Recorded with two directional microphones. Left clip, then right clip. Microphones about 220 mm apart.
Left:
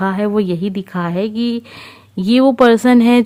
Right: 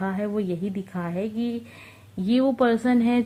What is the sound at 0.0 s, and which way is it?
Speech, 45° left (ahead or behind).